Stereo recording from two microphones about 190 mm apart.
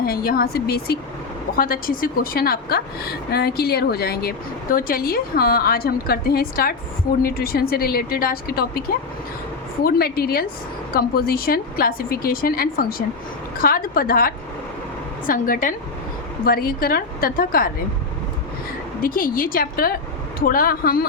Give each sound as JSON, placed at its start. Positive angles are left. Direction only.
{"t": 0.0, "sound": "a woman's voice", "side_deg": 50}
{"t": 9.8, "sound": "a woman's voice", "side_deg": 55}
{"t": 19.0, "sound": "a woman's voice", "side_deg": 45}